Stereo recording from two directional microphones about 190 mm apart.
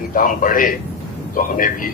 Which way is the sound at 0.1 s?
45° left (ahead or behind).